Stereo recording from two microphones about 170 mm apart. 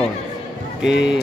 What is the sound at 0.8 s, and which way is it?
Speech, 90° left.